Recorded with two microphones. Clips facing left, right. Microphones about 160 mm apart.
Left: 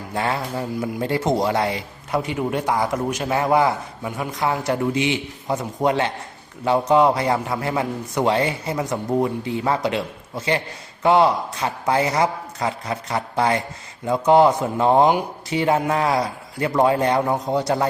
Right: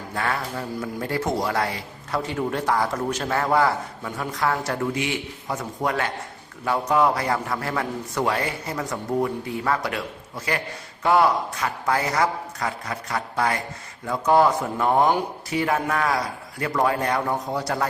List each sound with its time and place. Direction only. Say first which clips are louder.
0.1 s a man's voice: left 3 dB; 25° left (ahead or behind)